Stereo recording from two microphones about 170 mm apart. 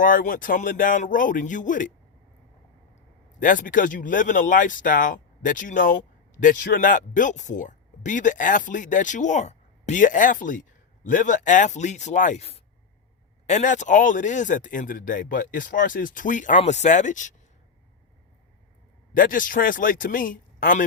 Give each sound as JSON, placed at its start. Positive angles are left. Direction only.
{"t": 0.0, "sound": "speech", "side_deg": 55}
{"t": 3.4, "sound": "speech", "side_deg": 50}
{"t": 19.1, "sound": "speech", "side_deg": 55}